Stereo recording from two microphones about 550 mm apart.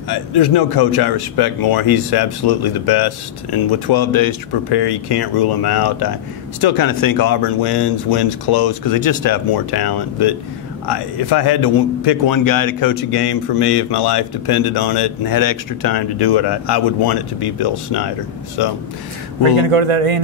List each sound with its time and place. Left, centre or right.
0.1 s speech: left
18.6 s speech: left
19.6 s a man's voice: right